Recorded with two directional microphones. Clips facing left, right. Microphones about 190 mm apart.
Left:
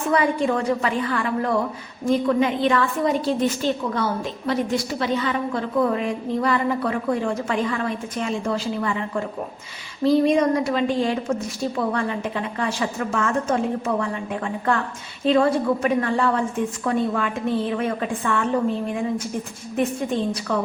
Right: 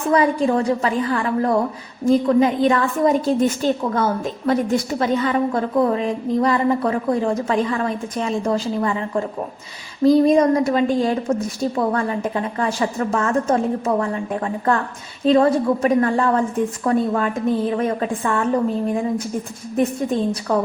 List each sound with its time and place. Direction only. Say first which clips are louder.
0.1 s a woman's voice: right 4 dB; 35° right (ahead or behind)
20.5 s a woman's voice: right 5 dB; 40° right (ahead or behind)